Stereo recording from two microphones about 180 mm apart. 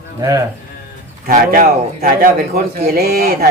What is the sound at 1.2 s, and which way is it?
A man's voice, 55° right (ahead or behind).